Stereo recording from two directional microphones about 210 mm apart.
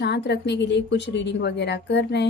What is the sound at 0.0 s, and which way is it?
A woman's voice, 55° left (ahead or behind).